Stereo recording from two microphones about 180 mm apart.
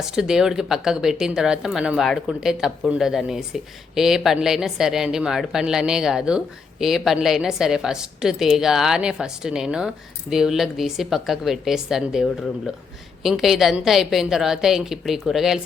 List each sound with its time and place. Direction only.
0.0 s speech: 5° right (ahead or behind)